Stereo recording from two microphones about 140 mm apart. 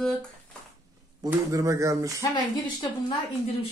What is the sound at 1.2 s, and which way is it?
Speech, 25° right (ahead or behind).